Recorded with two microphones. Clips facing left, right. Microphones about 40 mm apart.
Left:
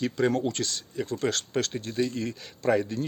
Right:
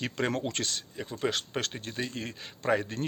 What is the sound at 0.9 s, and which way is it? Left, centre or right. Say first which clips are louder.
Speech: left 4 dB; centre.